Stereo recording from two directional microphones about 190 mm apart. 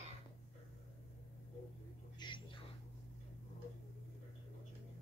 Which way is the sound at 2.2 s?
25° left (ahead or behind).